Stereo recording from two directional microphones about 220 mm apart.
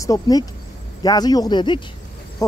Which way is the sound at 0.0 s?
15° left (ahead or behind).